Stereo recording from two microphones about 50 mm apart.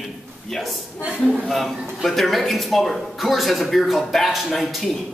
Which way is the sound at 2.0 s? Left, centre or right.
Centre.